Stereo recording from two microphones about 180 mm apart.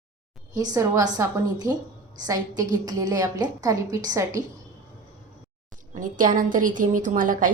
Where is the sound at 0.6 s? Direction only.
20° right (ahead or behind).